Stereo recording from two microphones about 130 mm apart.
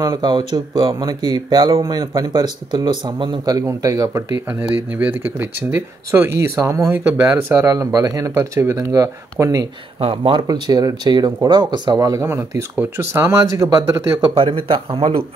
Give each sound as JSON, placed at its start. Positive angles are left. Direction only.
{"t": 0.0, "sound": "speech", "side_deg": -35}
{"t": 4.5, "sound": "speech", "side_deg": -15}
{"t": 9.9, "sound": "speech", "side_deg": -45}
{"t": 10.4, "sound": "speech", "side_deg": -30}